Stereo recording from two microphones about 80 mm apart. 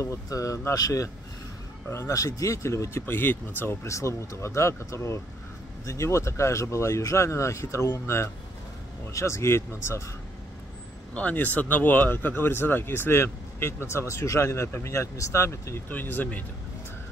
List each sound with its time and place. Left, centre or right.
0.0 s speech: left
3.8 s speech: left
11.1 s speech: centre; by 15.8 s left
15.9 s speech: left